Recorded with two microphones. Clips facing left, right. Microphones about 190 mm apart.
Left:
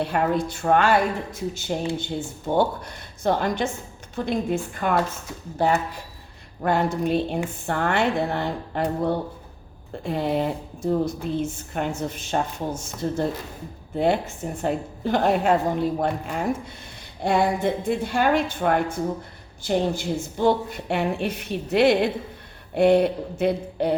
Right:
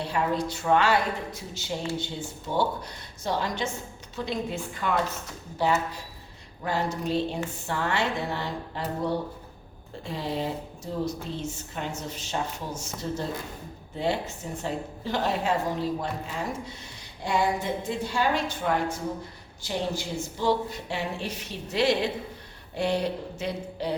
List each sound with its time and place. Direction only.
0.0 s a woman's voice: 55° left (ahead or behind)